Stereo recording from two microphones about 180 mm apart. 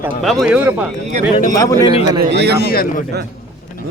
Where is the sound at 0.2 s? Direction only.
Centre (ahead or behind).